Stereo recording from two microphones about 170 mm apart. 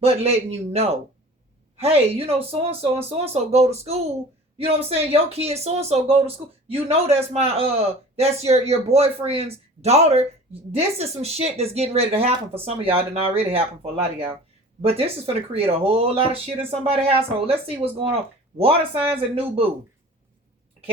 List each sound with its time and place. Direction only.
0.0 s speech: 35° right (ahead or behind)
14.8 s speech: 35° right (ahead or behind)